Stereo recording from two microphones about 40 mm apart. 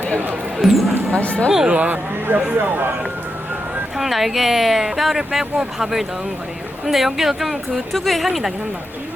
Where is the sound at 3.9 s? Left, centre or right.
Centre.